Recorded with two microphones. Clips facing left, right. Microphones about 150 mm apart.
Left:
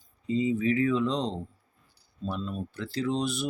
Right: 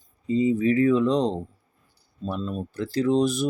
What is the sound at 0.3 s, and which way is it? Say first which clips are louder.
Speech: right 5 dB; 40° right (ahead or behind).